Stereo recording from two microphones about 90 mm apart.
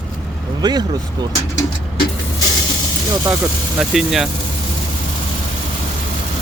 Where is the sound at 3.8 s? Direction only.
5° right (ahead or behind).